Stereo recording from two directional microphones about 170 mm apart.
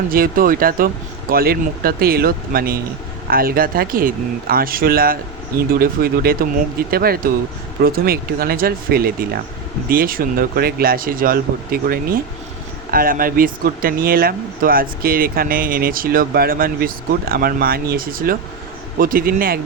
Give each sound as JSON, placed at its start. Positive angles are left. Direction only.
{"t": 0.1, "sound": "speech", "side_deg": -55}